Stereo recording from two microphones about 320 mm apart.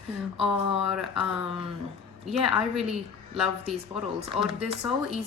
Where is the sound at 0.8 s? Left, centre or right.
Centre.